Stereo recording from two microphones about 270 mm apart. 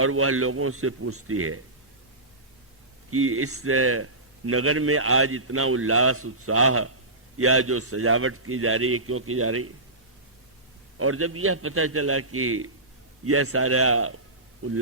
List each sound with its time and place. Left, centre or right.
0.0 s a man's voice: right
3.1 s a man's voice: right
10.9 s a man's voice: right